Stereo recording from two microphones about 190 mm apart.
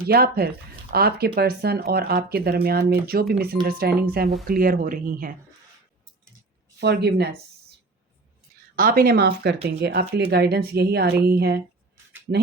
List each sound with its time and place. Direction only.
0.1 s speech: 55° right (ahead or behind)
6.7 s speech: 60° right (ahead or behind)
8.7 s speech: 50° right (ahead or behind)